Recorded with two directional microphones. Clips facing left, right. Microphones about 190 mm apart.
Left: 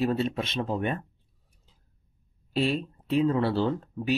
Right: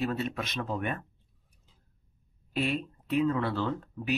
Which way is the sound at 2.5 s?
30° left (ahead or behind).